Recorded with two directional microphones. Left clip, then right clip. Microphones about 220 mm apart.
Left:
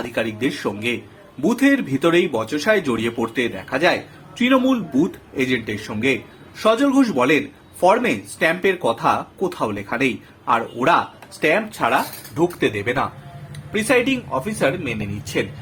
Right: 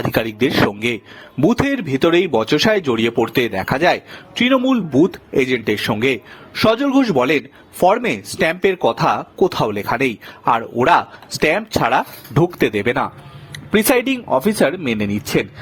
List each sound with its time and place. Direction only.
0.1 s speech: 45° right (ahead or behind)